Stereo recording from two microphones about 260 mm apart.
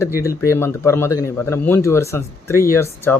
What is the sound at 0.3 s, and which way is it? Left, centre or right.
Speech, centre.